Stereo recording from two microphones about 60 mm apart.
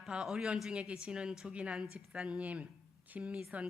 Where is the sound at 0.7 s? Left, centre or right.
Centre.